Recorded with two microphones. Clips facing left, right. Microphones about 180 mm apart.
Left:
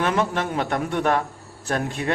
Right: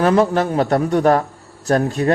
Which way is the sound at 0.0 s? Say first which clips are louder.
Right 8 dB; 35° right (ahead or behind).